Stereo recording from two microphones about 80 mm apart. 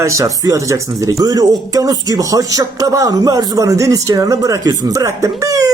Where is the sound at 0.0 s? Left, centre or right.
Right.